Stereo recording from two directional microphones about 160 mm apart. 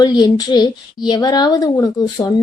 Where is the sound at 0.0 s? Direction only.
25° left (ahead or behind).